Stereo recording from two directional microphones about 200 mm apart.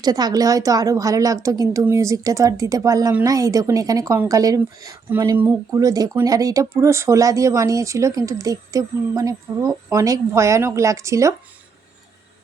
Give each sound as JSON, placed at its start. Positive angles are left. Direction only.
{"t": 0.0, "sound": "a woman's voice", "side_deg": -20}